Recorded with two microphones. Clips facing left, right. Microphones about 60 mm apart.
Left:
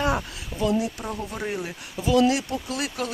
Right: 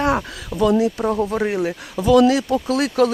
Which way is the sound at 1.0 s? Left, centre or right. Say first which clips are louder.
Right 12 dB; right.